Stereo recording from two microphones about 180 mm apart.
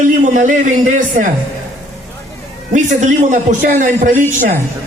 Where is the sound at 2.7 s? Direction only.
45° right (ahead or behind).